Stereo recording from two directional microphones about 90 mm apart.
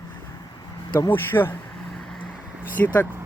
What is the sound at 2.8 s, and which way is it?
Speech, 25° left (ahead or behind).